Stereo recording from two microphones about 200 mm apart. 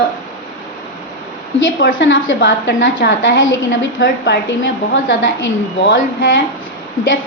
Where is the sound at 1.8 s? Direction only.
65° left (ahead or behind).